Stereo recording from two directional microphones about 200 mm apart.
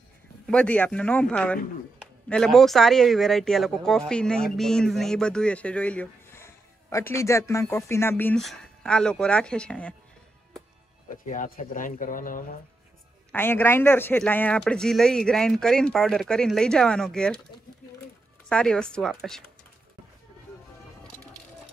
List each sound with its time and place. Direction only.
0.5 s a man's voice: 5° left (ahead or behind)
11.2 s speech: 40° left (ahead or behind)
13.3 s a man's voice: 10° left (ahead or behind)
18.5 s a man's voice: 5° left (ahead or behind)